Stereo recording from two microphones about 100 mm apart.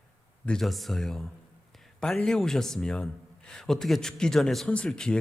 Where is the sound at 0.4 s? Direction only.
5° left (ahead or behind).